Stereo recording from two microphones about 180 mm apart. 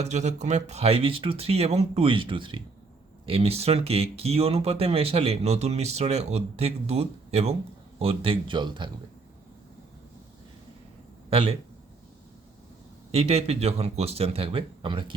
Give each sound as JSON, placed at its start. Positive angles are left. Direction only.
{"t": 0.0, "sound": "speech", "side_deg": -40}
{"t": 11.3, "sound": "speech", "side_deg": -30}
{"t": 13.1, "sound": "speech", "side_deg": -35}